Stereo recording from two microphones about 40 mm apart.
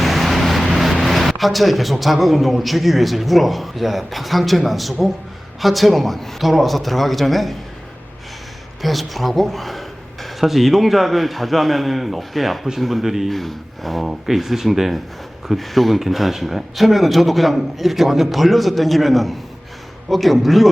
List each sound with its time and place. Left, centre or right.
0.0 s vehicle: centre
0.6 s vehicle: centre
0.9 s speech: centre
8.8 s speech: centre
13.3 s speech: centre
14.0 s speech: centre